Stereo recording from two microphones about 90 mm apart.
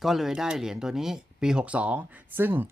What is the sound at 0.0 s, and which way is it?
Speech, 5° right (ahead or behind).